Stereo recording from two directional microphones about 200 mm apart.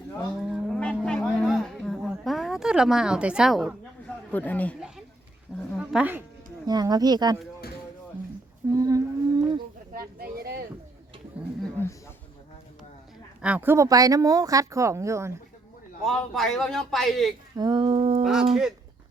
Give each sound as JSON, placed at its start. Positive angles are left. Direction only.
{"t": 0.5, "sound": "livestock", "side_deg": 5}
{"t": 5.7, "sound": "a sound", "side_deg": -5}
{"t": 6.7, "sound": "speech", "side_deg": -20}
{"t": 8.7, "sound": "a sound", "side_deg": -15}
{"t": 9.9, "sound": "a sound", "side_deg": -50}
{"t": 13.4, "sound": "speech", "side_deg": -10}
{"t": 16.0, "sound": "a man's voice", "side_deg": 0}
{"t": 17.6, "sound": "speech", "side_deg": -20}
{"t": 18.2, "sound": "a man's voice", "side_deg": -5}